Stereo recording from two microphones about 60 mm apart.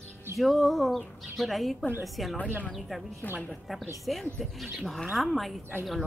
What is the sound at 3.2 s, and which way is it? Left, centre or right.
Speech, left.